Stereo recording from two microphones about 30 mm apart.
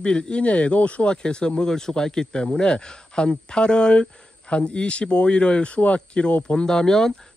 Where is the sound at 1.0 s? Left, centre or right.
Left.